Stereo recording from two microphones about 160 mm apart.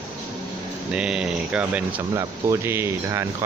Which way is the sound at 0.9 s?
5° right (ahead or behind).